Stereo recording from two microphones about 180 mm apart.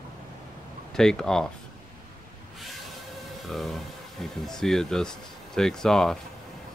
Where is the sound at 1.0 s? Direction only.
5° left (ahead or behind).